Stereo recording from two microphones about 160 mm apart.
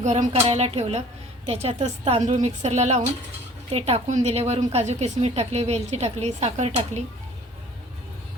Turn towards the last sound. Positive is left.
turn(degrees=-45)  # may be behind; listen again after turning